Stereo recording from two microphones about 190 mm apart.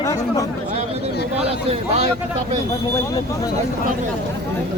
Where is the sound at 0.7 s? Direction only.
35° right (ahead or behind).